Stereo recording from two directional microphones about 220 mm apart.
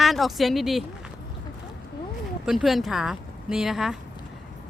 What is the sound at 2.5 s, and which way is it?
A woman's voice, centre (ahead or behind).